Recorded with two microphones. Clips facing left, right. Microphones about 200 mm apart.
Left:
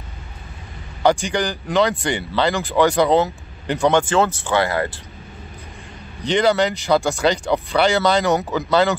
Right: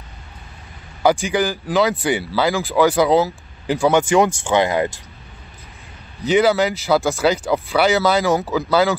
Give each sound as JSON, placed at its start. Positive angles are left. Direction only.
{"t": 1.0, "sound": "speech", "side_deg": -5}
{"t": 4.4, "sound": "speech", "side_deg": -15}
{"t": 6.2, "sound": "speech", "side_deg": -5}